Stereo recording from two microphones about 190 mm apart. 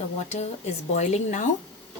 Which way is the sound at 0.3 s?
35° left (ahead or behind).